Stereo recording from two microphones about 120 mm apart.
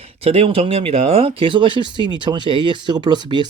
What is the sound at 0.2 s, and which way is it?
Speech, 55° right (ahead or behind).